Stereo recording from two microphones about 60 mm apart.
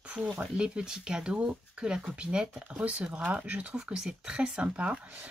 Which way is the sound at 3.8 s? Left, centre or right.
Centre.